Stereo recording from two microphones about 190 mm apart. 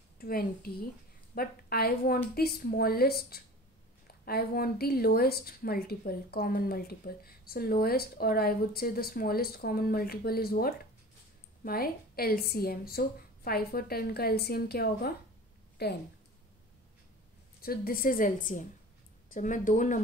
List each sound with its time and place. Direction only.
0.2 s a woman's voice: 50° left (ahead or behind)
17.6 s a woman's voice: 50° left (ahead or behind)